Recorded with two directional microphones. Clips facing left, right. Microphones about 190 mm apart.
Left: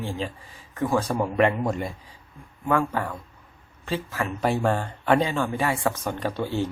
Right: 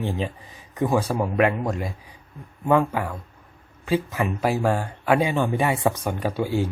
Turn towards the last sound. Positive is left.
turn(degrees=-10)  # may be behind; listen again after turning